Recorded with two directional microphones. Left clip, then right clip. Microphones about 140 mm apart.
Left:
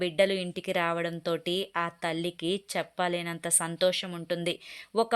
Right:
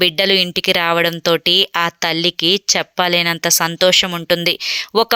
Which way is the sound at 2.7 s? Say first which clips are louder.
Right 14 dB; 40° right (ahead or behind).